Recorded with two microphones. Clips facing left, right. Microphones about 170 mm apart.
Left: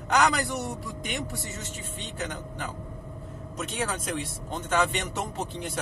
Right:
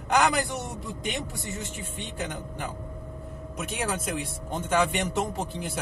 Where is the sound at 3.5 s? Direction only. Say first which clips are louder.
Right 1 dB; 10° right (ahead or behind).